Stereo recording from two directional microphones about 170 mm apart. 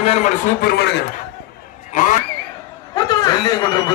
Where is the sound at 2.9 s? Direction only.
20° left (ahead or behind).